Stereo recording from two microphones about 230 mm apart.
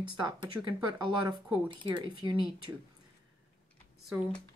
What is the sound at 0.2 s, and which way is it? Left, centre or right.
Speech, centre.